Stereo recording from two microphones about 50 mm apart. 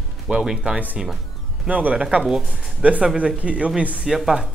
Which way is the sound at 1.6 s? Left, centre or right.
Right.